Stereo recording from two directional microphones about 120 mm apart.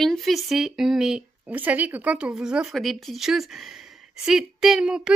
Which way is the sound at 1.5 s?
15° right (ahead or behind).